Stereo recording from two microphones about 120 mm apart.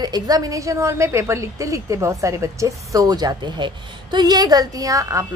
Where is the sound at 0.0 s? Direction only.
30° right (ahead or behind).